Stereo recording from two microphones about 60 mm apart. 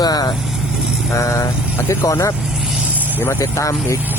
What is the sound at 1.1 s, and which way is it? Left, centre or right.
Speech, left.